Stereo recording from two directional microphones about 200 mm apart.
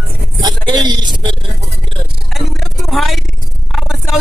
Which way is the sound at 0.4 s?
20° right (ahead or behind).